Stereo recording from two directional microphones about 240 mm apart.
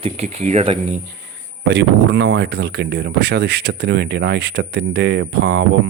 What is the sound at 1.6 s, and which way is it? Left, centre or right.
Speech, right.